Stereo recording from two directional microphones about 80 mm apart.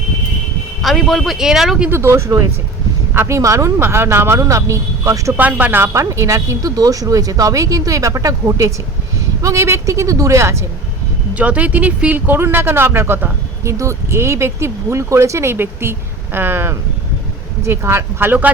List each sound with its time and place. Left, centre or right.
0.8 s speech: centre
1.9 s speech: right
5.4 s speech: right
5.9 s speech: right
11.3 s speech: centre